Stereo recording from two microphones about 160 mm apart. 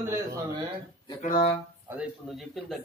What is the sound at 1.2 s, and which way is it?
Speech, 65° left (ahead or behind).